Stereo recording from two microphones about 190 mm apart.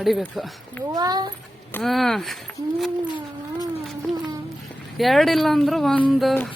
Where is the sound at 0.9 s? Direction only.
20° right (ahead or behind).